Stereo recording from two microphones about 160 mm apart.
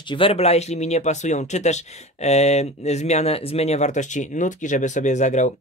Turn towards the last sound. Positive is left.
turn(degrees=50)  # may be behind; listen again after turning